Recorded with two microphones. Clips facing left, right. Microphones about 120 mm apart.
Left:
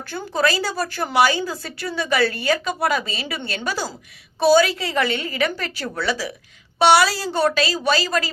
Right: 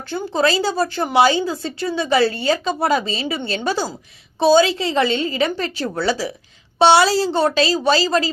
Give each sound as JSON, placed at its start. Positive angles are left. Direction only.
{"t": 0.1, "sound": "speech", "side_deg": -25}